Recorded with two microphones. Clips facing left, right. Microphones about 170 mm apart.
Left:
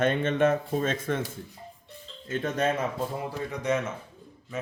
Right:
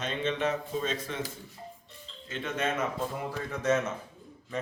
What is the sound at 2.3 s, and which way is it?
Speech, 45° left (ahead or behind).